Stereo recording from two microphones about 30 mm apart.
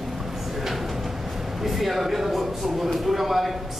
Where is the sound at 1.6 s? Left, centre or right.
Centre.